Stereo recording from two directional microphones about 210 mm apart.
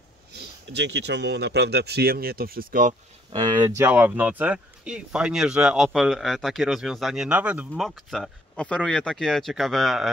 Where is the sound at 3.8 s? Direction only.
10° right (ahead or behind).